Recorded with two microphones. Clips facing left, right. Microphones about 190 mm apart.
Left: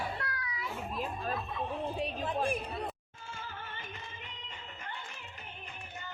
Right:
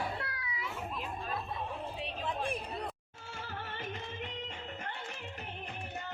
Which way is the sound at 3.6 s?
70° right (ahead or behind).